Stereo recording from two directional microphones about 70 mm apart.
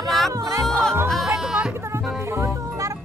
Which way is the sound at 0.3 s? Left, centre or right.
Right.